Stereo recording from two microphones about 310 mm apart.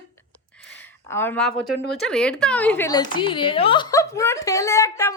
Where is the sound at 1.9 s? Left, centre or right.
Centre.